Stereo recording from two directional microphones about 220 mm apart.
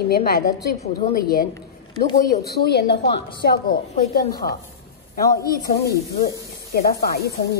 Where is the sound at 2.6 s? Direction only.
45° left (ahead or behind).